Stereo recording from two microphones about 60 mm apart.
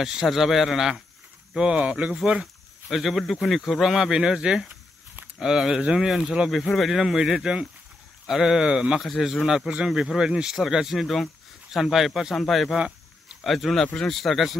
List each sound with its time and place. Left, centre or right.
0.0 s speech: centre
2.4 s speech: centre
9.0 s speech: centre